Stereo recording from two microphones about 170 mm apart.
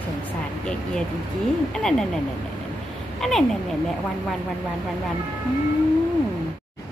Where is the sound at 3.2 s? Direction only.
Centre (ahead or behind).